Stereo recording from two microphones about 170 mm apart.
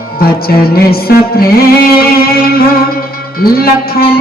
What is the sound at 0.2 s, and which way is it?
Music, 65° left (ahead or behind).